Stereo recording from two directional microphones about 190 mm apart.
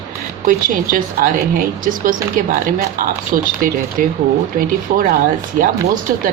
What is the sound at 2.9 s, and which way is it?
A woman's voice, 45° right (ahead or behind).